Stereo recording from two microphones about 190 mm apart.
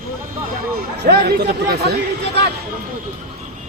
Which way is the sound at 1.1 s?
60° right (ahead or behind).